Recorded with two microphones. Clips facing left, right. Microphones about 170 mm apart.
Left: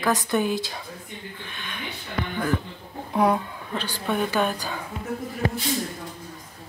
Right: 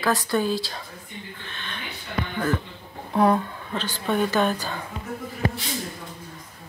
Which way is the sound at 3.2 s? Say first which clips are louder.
Right 2 dB; 10° left (ahead or behind).